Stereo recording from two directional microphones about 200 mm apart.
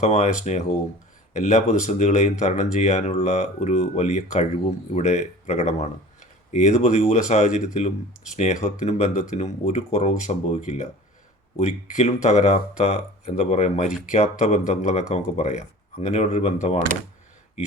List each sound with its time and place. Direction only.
0.0 s speech: 35° left (ahead or behind)